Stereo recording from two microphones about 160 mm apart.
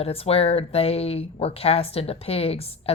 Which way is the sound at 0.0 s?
35° left (ahead or behind).